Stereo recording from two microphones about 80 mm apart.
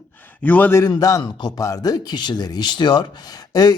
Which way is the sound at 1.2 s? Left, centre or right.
Left.